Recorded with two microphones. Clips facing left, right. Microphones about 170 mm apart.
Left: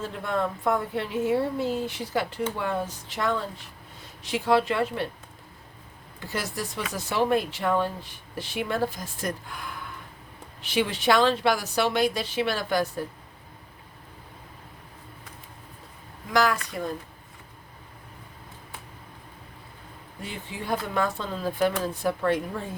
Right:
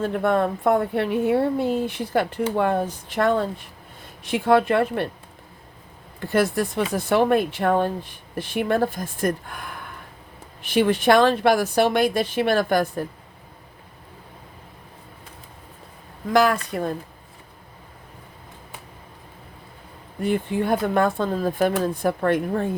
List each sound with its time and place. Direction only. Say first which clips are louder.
0.0 s a woman's voice: right 7 dB; 60° right (ahead or behind)
6.1 s a woman's voice: right 11 dB; 55° right (ahead or behind)
16.3 s a woman's voice: right 5 dB; 55° right (ahead or behind)
20.2 s a woman's voice: right 12 dB; 55° right (ahead or behind)